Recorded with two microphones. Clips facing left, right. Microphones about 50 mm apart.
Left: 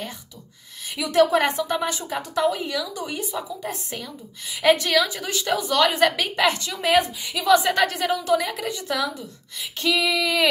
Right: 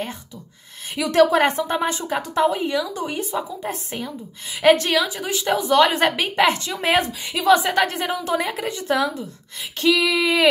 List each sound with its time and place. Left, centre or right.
0.9 s a woman's voice: right
1.4 s a woman's voice: right
4.5 s female singing: right
4.9 s a woman's voice: centre; by 7.0 s right
7.2 s female singing: right
7.6 s a woman's voice: centre
7.9 s a woman's voice: right
9.8 s female singing: right